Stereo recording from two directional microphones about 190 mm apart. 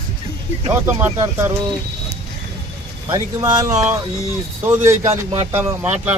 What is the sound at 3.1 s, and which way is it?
Speech, 15° right (ahead or behind).